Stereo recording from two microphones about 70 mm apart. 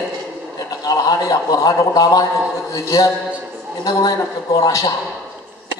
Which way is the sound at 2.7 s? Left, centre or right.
Left.